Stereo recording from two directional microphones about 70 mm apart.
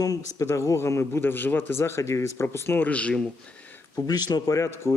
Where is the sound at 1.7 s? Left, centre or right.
Left.